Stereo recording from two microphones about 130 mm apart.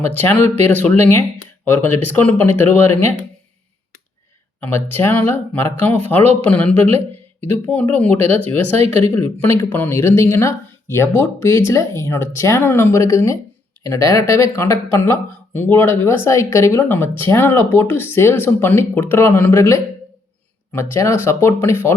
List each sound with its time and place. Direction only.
0.0 s speech: 15° left (ahead or behind)
4.6 s speech: 15° left (ahead or behind)